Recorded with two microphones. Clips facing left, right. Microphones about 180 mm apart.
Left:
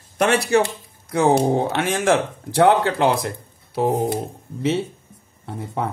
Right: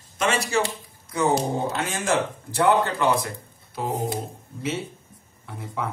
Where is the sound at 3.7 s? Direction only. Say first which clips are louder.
Left 7 dB; 55° left (ahead or behind).